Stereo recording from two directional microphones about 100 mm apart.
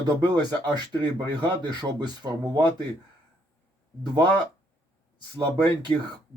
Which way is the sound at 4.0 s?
45° right (ahead or behind).